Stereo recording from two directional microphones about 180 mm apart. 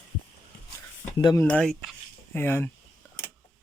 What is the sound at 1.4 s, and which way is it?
Speech, 5° left (ahead or behind).